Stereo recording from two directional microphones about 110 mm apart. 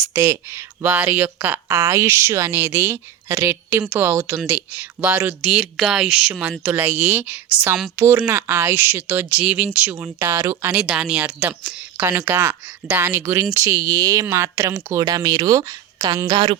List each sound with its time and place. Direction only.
0.1 s a woman's voice: 25° right (ahead or behind)
1.7 s a woman's voice: 30° right (ahead or behind); by 9.6 s 10° right (ahead or behind)
10.0 s speech: 25° right (ahead or behind)
10.7 s a woman's voice: 10° right (ahead or behind)
15.0 s speech: 35° right (ahead or behind)